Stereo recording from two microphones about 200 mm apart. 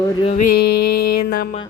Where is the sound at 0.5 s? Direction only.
50° left (ahead or behind).